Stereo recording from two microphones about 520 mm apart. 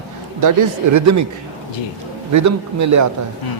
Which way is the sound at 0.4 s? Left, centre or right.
Right.